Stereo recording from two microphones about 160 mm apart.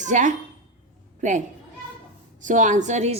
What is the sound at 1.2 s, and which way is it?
A woman's voice, 50° right (ahead or behind).